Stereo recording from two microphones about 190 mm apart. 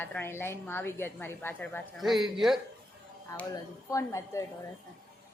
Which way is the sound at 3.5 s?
15° left (ahead or behind).